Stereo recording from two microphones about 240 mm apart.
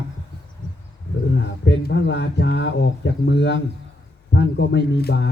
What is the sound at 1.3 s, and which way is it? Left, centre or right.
A man's voice, left.